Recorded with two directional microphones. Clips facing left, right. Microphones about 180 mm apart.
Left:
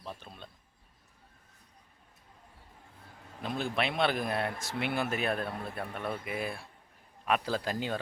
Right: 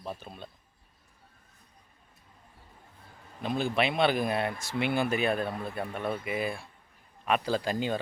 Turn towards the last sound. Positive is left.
turn(degrees=0)  # may be behind; listen again after turning